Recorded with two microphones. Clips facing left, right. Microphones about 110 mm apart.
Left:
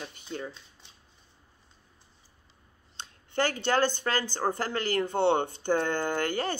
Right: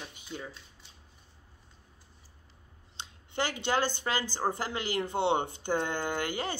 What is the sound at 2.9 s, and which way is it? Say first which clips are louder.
Speech: left 4 dB; 15° right (ahead or behind).